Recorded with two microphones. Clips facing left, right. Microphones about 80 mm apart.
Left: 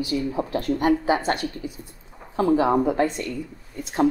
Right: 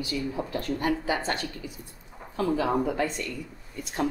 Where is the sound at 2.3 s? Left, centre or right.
Left.